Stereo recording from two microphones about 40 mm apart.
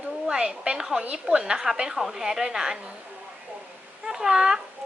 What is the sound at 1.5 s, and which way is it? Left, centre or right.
A woman's voice, centre.